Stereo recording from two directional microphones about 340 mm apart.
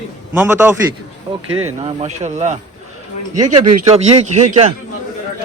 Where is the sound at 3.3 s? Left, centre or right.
Right.